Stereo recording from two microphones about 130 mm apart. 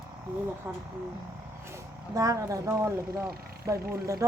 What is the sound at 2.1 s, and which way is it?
Speech, 25° right (ahead or behind).